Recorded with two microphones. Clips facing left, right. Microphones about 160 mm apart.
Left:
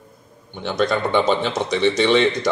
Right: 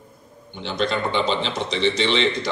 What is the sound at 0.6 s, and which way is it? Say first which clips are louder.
A man's voice: left 3 dB; 50° left (ahead or behind).